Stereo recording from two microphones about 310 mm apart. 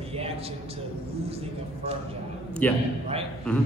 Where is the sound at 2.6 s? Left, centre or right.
Centre.